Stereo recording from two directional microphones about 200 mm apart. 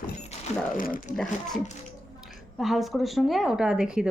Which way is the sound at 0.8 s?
40° left (ahead or behind).